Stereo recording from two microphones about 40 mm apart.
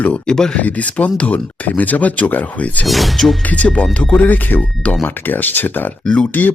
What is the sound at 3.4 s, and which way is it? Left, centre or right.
Speech, left.